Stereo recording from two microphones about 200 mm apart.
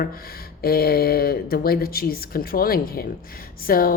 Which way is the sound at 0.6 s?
50° left (ahead or behind).